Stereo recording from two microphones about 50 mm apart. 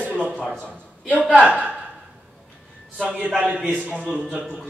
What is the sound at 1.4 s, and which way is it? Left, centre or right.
Speech, right.